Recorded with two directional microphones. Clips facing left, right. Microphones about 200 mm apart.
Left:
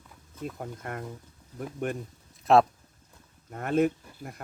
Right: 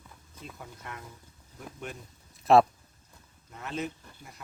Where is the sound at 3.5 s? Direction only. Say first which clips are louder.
Left 11 dB; 55° left (ahead or behind).